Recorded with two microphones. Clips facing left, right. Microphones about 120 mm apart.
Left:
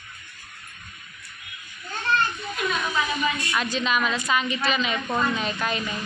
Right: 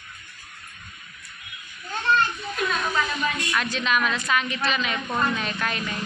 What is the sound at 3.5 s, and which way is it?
A woman's voice, centre (ahead or behind).